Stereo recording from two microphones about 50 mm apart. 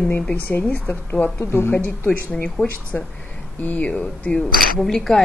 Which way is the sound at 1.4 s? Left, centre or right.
Left.